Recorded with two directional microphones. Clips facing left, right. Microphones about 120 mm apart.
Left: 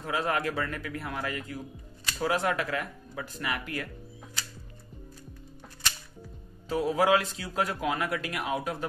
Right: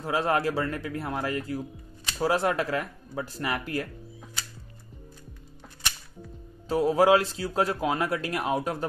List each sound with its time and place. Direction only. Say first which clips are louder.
0.0 s a man's voice: right 4 dB; 30° right (ahead or behind)
6.7 s a man's voice: right 4 dB; 35° right (ahead or behind)